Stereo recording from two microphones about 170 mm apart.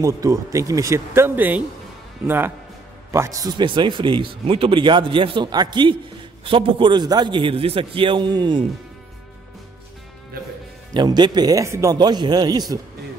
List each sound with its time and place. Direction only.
0.0 s a man's voice: 20° right (ahead or behind)
10.9 s a man's voice: 25° right (ahead or behind)